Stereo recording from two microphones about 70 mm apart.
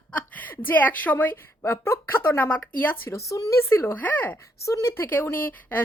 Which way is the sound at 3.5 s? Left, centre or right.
Left.